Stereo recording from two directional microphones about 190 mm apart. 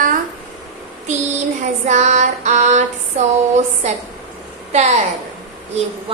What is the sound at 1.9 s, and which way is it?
Speech, 40° right (ahead or behind).